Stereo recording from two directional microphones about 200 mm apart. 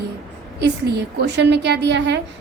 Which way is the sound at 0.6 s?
55° right (ahead or behind).